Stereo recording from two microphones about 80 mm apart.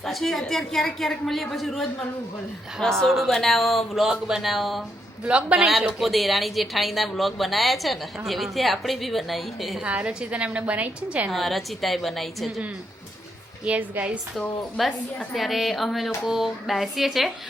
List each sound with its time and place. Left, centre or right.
0.0 s a woman's voice: centre
5.2 s a woman's voice: centre
6.0 s a woman's voice: centre
9.8 s a woman's voice: centre
11.3 s a woman's voice: centre
13.7 s a woman's voice: centre
14.8 s a woman's voice: centre